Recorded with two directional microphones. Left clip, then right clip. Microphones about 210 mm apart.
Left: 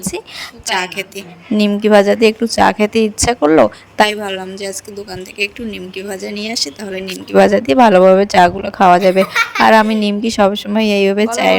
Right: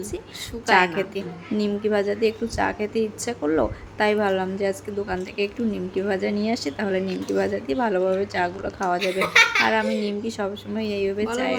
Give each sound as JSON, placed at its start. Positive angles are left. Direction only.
{"t": 1.5, "sound": "a woman's voice", "side_deg": 50}
{"t": 6.3, "sound": "a woman's voice", "side_deg": 50}
{"t": 6.7, "sound": "speech", "side_deg": 0}
{"t": 7.0, "sound": "a woman's voice", "side_deg": 50}
{"t": 9.0, "sound": "speech", "side_deg": 30}
{"t": 9.6, "sound": "a woman's voice", "side_deg": 50}